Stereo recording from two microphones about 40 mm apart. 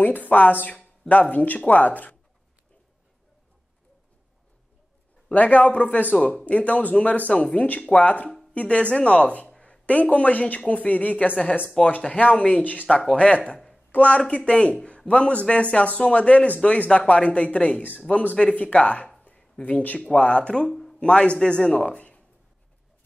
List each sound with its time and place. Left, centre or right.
0.0 s speech: left
0.7 s a sound: left
1.3 s speech: left
5.3 s speech: left
11.8 s speech: centre
12.1 s a man's voice: left
20.0 s speech: left
20.6 s a sound: centre
21.0 s speech: left